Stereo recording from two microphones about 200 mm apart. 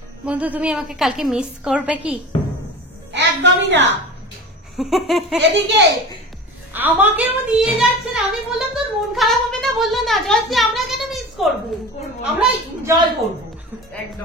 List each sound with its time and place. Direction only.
0.2 s a woman's voice: 5° right (ahead or behind)
3.1 s a woman's voice: 60° right (ahead or behind)
4.7 s a woman's voice: centre (ahead or behind)
5.4 s a child's voice: 60° right (ahead or behind)
6.7 s a woman's voice: 10° right (ahead or behind)